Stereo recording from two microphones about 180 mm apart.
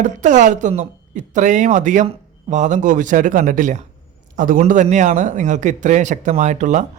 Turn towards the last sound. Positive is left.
turn(degrees=-40)  # may be behind; listen again after turning